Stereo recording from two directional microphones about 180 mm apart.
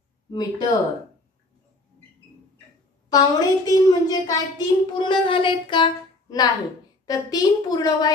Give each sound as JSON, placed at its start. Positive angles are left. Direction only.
{"t": 0.3, "sound": "a child's voice", "side_deg": 20}
{"t": 3.1, "sound": "a child's voice", "side_deg": 20}